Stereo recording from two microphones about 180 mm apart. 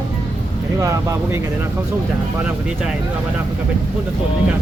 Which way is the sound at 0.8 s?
15° right (ahead or behind).